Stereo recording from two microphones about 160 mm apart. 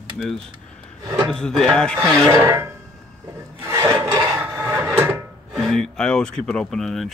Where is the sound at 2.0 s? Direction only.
15° right (ahead or behind).